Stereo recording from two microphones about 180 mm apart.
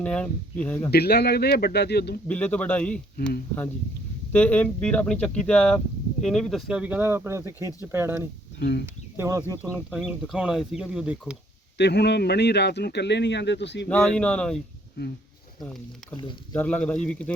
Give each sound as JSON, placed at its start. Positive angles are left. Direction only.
{"t": 0.0, "sound": "speech", "side_deg": 5}
{"t": 0.9, "sound": "speech", "side_deg": 60}
{"t": 2.2, "sound": "speech", "side_deg": 10}
{"t": 4.3, "sound": "speech", "side_deg": 10}
{"t": 8.5, "sound": "speech", "side_deg": 70}
{"t": 9.1, "sound": "speech", "side_deg": -15}
{"t": 11.8, "sound": "speech", "side_deg": 70}
{"t": 13.8, "sound": "speech", "side_deg": 5}
{"t": 16.1, "sound": "speech", "side_deg": 25}
{"t": 16.6, "sound": "speech", "side_deg": 10}